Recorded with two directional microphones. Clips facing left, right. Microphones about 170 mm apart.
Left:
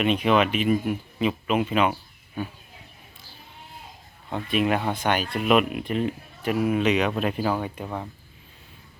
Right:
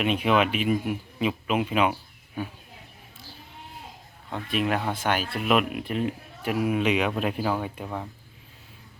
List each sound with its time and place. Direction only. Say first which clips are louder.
0.0 s speech: left 2 dB; 5° right (ahead or behind)
4.3 s speech: left 3 dB; centre (ahead or behind)